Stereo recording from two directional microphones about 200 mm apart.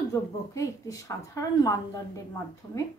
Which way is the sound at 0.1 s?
15° left (ahead or behind).